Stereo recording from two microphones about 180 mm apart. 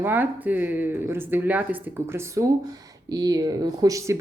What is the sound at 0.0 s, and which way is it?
Speech, 10° right (ahead or behind).